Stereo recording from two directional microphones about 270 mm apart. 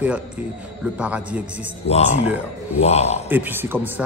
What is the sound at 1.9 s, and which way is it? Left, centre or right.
A man's voice, left.